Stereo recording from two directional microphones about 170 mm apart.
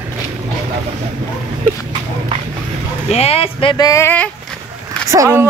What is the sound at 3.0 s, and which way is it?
Speech, 40° left (ahead or behind).